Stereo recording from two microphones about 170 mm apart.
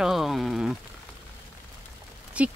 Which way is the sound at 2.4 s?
10° right (ahead or behind).